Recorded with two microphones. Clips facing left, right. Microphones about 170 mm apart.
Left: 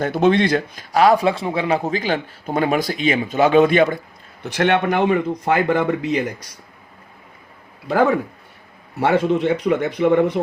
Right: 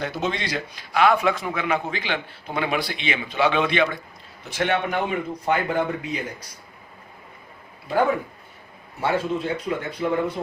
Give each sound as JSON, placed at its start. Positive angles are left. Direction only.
{"t": 0.0, "sound": "a man's voice", "side_deg": 55}
{"t": 4.4, "sound": "speech", "side_deg": 70}
{"t": 9.0, "sound": "speech", "side_deg": 75}